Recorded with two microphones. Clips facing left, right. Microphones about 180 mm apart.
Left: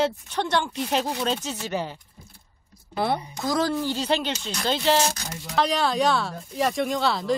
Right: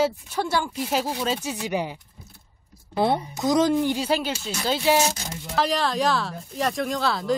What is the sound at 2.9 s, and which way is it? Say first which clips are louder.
A woman's voice: right 3 dB; 20° right (ahead or behind).